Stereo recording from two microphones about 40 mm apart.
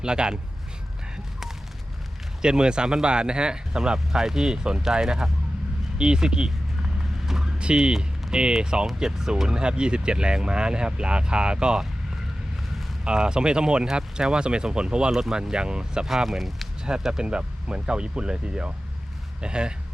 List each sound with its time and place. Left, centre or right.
0.0 s speech: right
2.4 s speech: right
7.0 s vehicle: centre
7.6 s speech: right
13.1 s speech: right
15.1 s speech: centre
15.4 s speech: right
16.0 s speech: centre
16.8 s speech: centre